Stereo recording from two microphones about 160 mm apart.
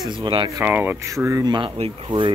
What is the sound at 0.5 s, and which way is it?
Speech, 10° right (ahead or behind).